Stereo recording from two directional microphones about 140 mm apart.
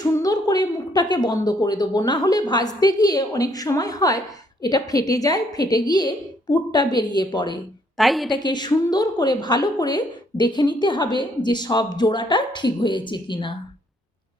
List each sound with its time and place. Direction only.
0.0 s a woman's voice: 25° left (ahead or behind)
7.9 s a woman's voice: centre (ahead or behind)
8.3 s a woman's voice: 30° left (ahead or behind)